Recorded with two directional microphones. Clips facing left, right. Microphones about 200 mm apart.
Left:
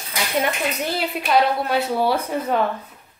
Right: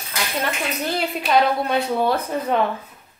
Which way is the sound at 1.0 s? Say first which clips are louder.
Even; centre (ahead or behind).